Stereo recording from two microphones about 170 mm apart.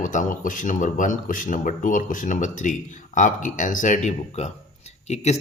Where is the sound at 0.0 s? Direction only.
50° left (ahead or behind).